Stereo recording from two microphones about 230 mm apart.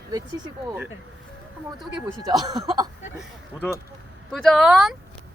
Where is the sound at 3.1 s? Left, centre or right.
Centre.